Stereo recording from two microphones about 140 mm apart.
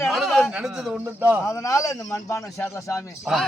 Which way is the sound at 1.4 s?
25° left (ahead or behind).